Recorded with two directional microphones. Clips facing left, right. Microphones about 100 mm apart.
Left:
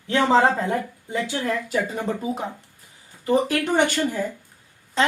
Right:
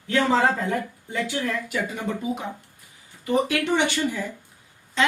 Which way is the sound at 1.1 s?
25° left (ahead or behind).